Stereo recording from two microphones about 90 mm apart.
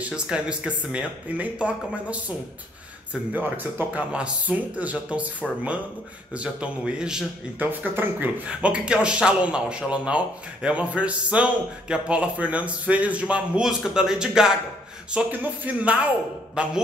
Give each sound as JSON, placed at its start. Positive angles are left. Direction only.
{"t": 0.0, "sound": "speech", "side_deg": -10}
{"t": 6.3, "sound": "speech", "side_deg": -15}
{"t": 7.5, "sound": "speech", "side_deg": -20}
{"t": 8.5, "sound": "speech", "side_deg": -10}